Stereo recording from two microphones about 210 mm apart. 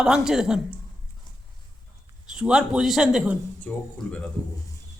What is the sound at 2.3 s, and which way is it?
A woman's voice, 5° right (ahead or behind).